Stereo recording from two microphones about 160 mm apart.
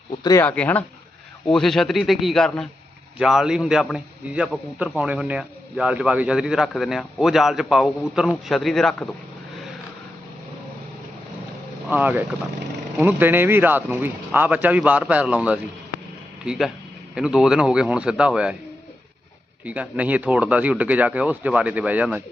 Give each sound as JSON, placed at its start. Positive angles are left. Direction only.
{"t": 0.2, "sound": "speech", "side_deg": 25}
{"t": 0.4, "sound": "a man's voice", "side_deg": 10}
{"t": 11.9, "sound": "a man's voice", "side_deg": -10}
{"t": 19.6, "sound": "speech", "side_deg": -10}